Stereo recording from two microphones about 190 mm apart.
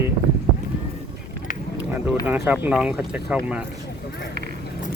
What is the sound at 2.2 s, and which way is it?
Speech, 10° right (ahead or behind).